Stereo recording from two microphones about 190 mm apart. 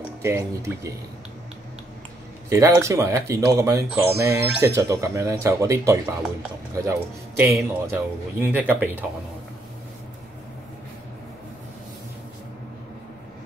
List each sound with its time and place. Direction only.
0.2 s a man's voice: 15° right (ahead or behind)
2.5 s a man's voice: 15° right (ahead or behind)